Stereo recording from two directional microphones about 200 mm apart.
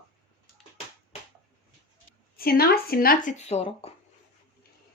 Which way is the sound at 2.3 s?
50° left (ahead or behind).